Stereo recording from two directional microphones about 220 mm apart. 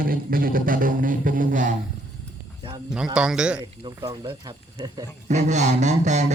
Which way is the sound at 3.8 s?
15° right (ahead or behind).